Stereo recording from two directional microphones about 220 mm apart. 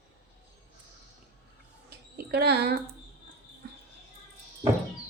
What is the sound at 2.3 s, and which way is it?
Speech, 45° right (ahead or behind).